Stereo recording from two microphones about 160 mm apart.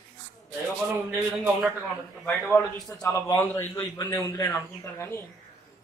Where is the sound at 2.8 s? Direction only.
20° left (ahead or behind).